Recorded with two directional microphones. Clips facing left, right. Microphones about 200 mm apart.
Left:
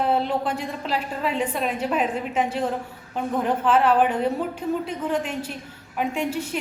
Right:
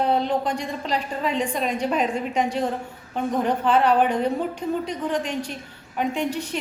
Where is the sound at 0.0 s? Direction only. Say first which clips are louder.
Right 1 dB; 5° left (ahead or behind).